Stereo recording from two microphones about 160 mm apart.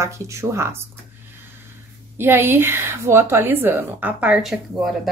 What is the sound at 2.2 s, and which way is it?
A woman's voice, 15° right (ahead or behind).